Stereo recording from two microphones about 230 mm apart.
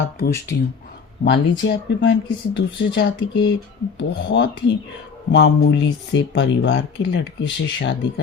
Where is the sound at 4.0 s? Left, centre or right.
Left.